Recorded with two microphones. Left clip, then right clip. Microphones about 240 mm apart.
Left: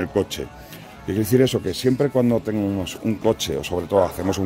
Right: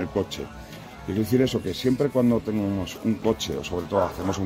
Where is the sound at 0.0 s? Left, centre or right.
Left.